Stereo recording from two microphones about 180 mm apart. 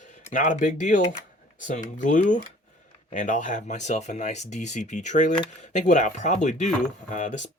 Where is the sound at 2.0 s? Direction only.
45° left (ahead or behind).